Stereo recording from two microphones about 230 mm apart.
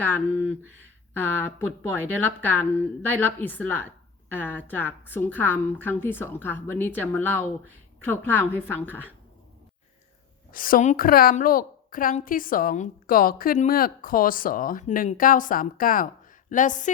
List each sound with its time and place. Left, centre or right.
0.0 s a woman's voice: centre
10.5 s a woman's voice: left